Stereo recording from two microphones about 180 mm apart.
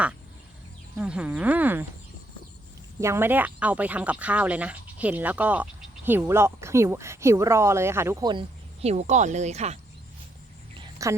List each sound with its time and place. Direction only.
0.9 s speech: 5° right (ahead or behind)
3.0 s speech: 15° right (ahead or behind); by 9.7 s 40° right (ahead or behind)
10.8 s cricket: 20° right (ahead or behind)